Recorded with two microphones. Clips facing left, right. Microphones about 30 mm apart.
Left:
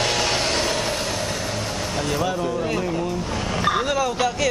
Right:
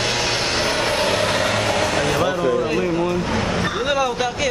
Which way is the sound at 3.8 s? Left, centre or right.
Centre.